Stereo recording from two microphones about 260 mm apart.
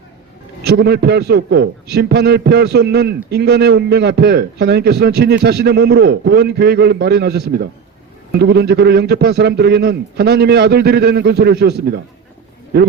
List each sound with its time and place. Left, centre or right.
0.6 s a man's voice: right